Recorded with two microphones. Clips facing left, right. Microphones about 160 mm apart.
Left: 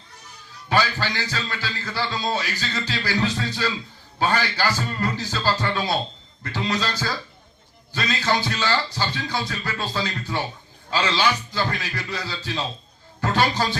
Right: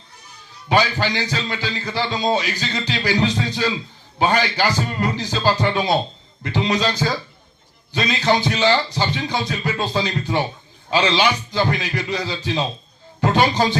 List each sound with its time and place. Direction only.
0.7 s speech: 20° right (ahead or behind)